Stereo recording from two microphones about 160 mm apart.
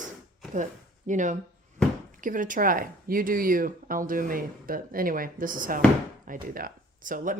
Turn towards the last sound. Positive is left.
turn(degrees=-55)  # may be behind; listen again after turning